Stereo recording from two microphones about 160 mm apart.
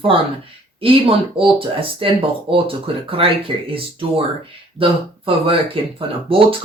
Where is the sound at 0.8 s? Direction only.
35° right (ahead or behind).